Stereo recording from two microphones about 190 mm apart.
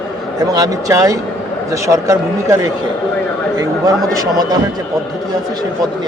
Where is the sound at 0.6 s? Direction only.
15° right (ahead or behind).